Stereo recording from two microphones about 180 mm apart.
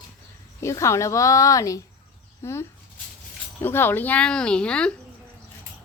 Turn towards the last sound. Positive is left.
turn(degrees=5)  # may be behind; listen again after turning